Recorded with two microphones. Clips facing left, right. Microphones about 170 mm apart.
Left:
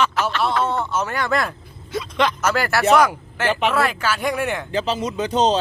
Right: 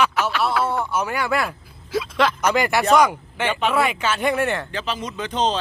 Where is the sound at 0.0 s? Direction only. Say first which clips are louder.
Even; 10° right (ahead or behind).